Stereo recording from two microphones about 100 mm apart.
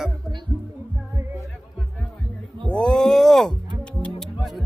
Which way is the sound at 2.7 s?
10° left (ahead or behind).